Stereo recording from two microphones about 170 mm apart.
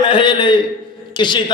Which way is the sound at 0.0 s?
30° left (ahead or behind).